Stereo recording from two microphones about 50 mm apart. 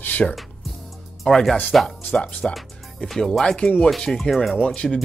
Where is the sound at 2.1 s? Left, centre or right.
Centre.